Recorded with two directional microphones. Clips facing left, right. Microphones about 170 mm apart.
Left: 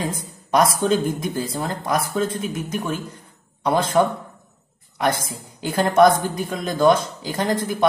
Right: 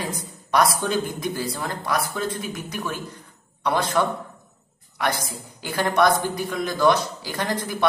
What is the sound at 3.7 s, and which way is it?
Speech, 25° left (ahead or behind).